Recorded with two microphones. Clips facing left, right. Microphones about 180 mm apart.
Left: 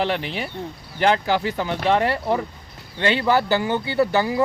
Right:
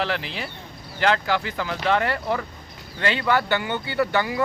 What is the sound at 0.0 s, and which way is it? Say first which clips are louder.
Speech: left 3 dB; 25° left (ahead or behind).